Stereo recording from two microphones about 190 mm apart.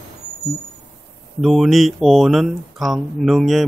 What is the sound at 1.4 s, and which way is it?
Speech, centre (ahead or behind).